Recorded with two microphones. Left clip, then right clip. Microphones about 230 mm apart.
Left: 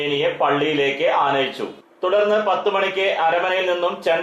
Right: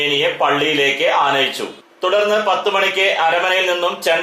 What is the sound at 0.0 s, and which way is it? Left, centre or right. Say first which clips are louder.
A man's voice: right 3 dB; centre.